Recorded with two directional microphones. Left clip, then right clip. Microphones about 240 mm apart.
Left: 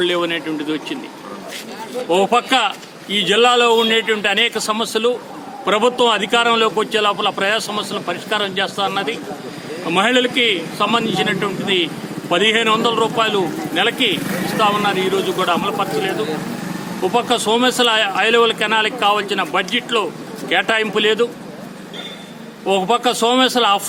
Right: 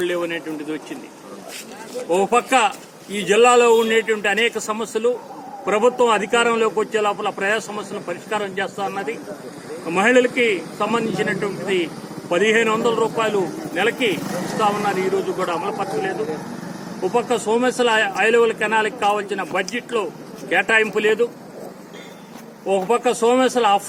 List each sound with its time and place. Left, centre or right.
0.0 s a man's voice: centre
2.0 s a man's voice: centre
22.6 s a man's voice: centre